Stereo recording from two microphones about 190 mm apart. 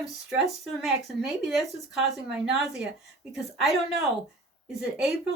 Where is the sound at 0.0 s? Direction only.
Centre (ahead or behind).